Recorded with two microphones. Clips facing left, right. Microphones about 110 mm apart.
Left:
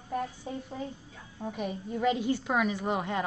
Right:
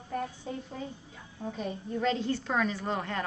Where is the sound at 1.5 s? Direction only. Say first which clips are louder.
Even; 15° left (ahead or behind).